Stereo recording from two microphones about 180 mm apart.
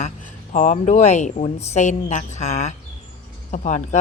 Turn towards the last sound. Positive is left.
turn(degrees=40)  # may be behind; listen again after turning